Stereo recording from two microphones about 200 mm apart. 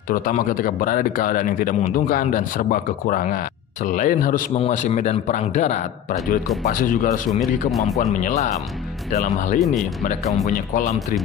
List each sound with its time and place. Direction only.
0.1 s speech: 45° left (ahead or behind)
8.1 s speech: 35° left (ahead or behind)
9.6 s speech: centre (ahead or behind)
10.7 s speech: 40° left (ahead or behind)